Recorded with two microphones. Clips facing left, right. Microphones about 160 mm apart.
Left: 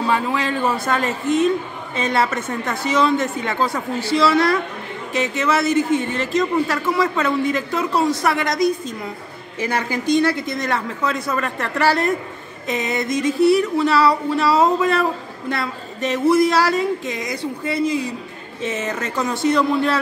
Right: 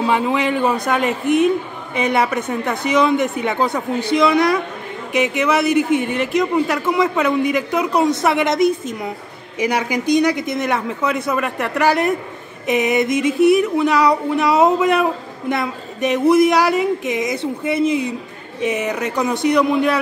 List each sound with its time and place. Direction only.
0.0 s a man's voice: 20° right (ahead or behind)